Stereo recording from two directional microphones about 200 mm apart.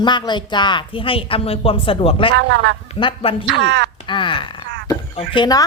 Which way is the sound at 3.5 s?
60° right (ahead or behind).